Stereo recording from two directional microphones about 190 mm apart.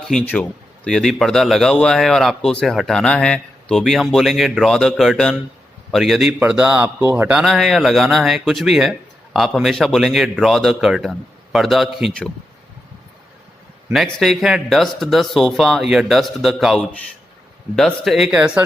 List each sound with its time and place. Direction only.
0.1 s a man's voice: 5° left (ahead or behind)
13.9 s a man's voice: centre (ahead or behind)